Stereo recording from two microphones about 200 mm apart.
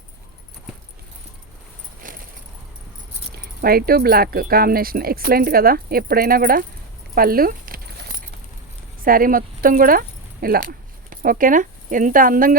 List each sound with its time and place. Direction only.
2.0 s keys jangling: 40° right (ahead or behind)
3.3 s speech: 50° right (ahead or behind)
7.2 s keys jangling: 45° right (ahead or behind)
9.0 s speech: 45° right (ahead or behind)